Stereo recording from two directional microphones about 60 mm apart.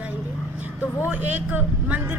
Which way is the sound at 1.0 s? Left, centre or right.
Right.